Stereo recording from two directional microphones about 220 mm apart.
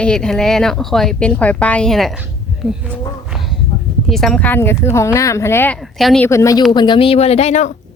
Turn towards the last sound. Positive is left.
turn(degrees=30)  # may be behind; listen again after turning